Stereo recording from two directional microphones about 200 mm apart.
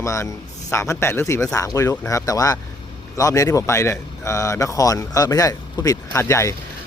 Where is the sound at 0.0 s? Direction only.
15° left (ahead or behind).